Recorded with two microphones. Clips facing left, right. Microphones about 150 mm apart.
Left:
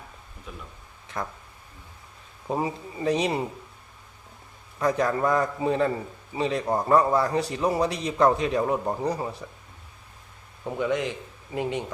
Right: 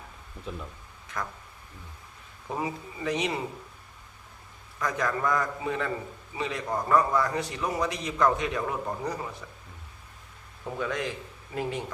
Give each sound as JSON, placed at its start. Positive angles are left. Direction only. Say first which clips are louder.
{"t": 0.5, "sound": "speech", "louder": "right 4 dB", "side_deg": -30}
{"t": 1.0, "sound": "speech", "louder": "left 2 dB", "side_deg": 30}
{"t": 2.5, "sound": "speech", "louder": "left 4 dB", "side_deg": 30}
{"t": 4.8, "sound": "speech", "louder": "left 5 dB", "side_deg": 30}
{"t": 10.8, "sound": "a man's voice", "louder": "left 5 dB", "side_deg": 20}